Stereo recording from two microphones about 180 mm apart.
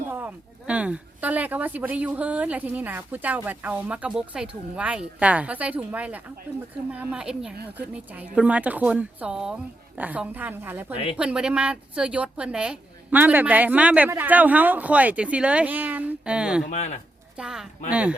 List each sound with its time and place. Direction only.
0.1 s a woman's voice: 10° right (ahead or behind)
16.6 s speech: 40° left (ahead or behind)
17.3 s a woman's voice: 5° right (ahead or behind)